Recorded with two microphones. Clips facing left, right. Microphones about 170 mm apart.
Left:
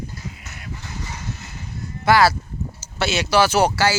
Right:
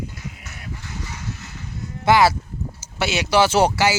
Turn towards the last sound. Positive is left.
turn(degrees=-20)  # may be behind; listen again after turning